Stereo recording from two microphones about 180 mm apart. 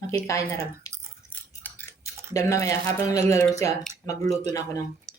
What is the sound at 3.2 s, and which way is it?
Speech, 15° left (ahead or behind).